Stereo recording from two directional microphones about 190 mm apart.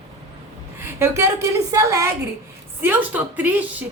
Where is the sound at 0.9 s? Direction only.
15° right (ahead or behind).